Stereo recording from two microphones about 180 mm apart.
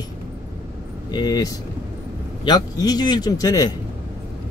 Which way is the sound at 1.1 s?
20° left (ahead or behind).